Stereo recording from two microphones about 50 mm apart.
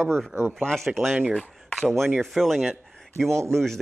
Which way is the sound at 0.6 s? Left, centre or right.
Centre.